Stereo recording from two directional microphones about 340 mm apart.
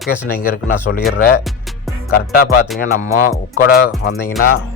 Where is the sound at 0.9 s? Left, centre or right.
Left.